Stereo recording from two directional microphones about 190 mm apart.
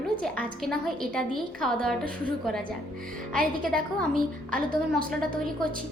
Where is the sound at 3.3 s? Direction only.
50° right (ahead or behind).